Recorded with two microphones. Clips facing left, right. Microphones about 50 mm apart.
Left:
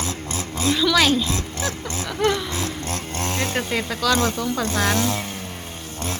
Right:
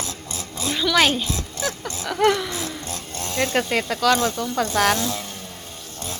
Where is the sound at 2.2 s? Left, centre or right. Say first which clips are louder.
Right 3 dB; right.